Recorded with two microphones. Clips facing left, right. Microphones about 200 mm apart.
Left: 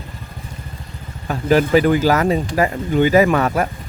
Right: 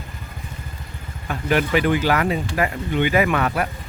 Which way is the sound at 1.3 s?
35° left (ahead or behind).